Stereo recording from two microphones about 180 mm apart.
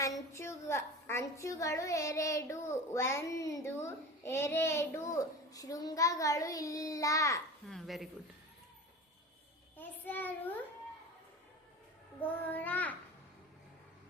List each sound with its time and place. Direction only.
0.3 s a woman's voice: 15° left (ahead or behind)
7.7 s speech: centre (ahead or behind)
9.7 s a woman's voice: 10° left (ahead or behind)
12.2 s a woman's voice: 10° left (ahead or behind)